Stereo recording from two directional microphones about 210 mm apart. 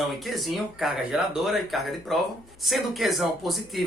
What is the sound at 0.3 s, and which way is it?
Speech, centre (ahead or behind).